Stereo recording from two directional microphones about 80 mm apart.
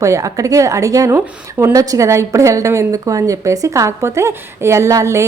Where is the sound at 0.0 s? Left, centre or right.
Right.